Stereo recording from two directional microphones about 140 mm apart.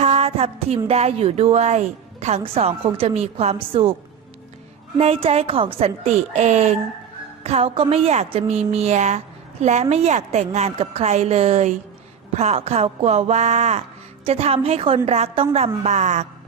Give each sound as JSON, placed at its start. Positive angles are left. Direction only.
{"t": 0.0, "sound": "a sound", "side_deg": -50}
{"t": 0.9, "sound": "speech", "side_deg": -45}
{"t": 4.9, "sound": "speech", "side_deg": -45}